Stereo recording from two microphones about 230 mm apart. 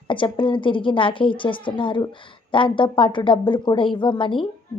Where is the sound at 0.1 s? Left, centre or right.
Left.